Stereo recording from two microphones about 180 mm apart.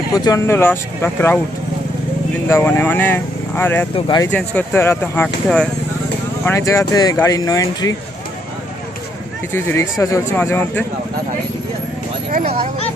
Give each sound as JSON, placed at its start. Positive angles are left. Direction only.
{"t": 0.1, "sound": "speech", "side_deg": 20}
{"t": 2.5, "sound": "speech", "side_deg": 10}
{"t": 3.9, "sound": "speech", "side_deg": 25}
{"t": 4.3, "sound": "speech", "side_deg": 10}
{"t": 6.4, "sound": "speech", "side_deg": 15}
{"t": 9.5, "sound": "speech", "side_deg": 15}